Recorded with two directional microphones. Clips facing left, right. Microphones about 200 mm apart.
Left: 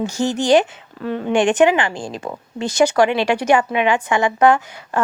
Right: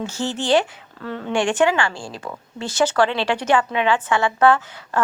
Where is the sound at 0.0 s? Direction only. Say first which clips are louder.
Left 5 dB; 15° left (ahead or behind).